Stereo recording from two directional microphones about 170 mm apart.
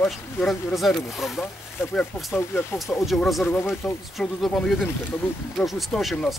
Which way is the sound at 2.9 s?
Centre (ahead or behind).